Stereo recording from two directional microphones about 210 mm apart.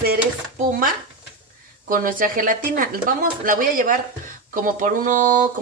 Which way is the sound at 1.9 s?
40° right (ahead or behind).